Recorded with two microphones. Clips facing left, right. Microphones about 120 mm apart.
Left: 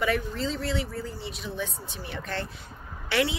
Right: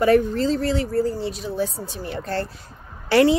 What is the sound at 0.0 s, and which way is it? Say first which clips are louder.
A woman's voice: right 10 dB; 40° right (ahead or behind).